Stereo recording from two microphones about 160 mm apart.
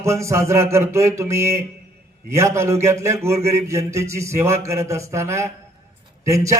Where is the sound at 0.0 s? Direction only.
20° right (ahead or behind).